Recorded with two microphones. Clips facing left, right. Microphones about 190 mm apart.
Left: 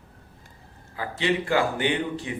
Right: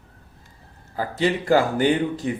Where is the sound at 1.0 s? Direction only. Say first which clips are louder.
Right 3 dB; 40° right (ahead or behind).